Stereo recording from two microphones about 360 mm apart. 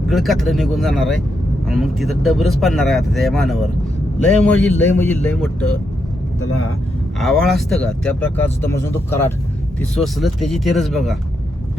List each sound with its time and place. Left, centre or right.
0.1 s speech: centre
7.2 s speech: centre